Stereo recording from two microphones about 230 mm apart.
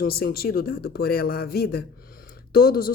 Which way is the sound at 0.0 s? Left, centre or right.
Left.